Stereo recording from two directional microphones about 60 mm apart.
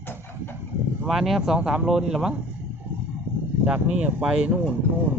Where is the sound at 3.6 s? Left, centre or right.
Centre.